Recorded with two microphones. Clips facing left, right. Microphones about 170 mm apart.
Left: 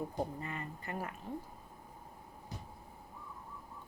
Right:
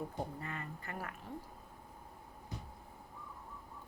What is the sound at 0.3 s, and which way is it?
Speech, 20° left (ahead or behind).